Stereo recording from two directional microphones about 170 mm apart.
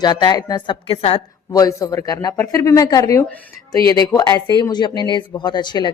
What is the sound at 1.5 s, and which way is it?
A woman's voice, 20° left (ahead or behind).